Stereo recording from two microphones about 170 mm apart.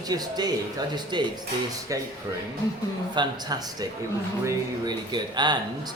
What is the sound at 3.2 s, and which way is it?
Speech, 25° right (ahead or behind).